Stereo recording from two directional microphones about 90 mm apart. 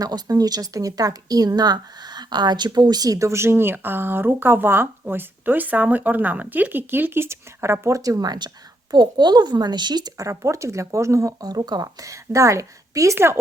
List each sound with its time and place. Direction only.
0.0 s speech: 45° right (ahead or behind); by 13.4 s 25° right (ahead or behind)